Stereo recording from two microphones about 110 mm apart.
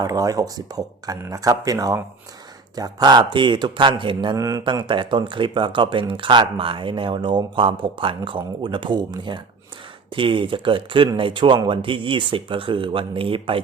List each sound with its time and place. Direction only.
0.0 s speech: 35° right (ahead or behind); by 4.4 s 50° right (ahead or behind)
4.4 s speech: 30° right (ahead or behind)
4.6 s speech: 45° right (ahead or behind)